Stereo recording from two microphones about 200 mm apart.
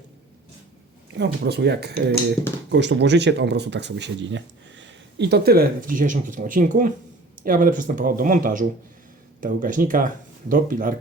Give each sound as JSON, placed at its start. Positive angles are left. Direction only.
{"t": 1.1, "sound": "speech", "side_deg": -55}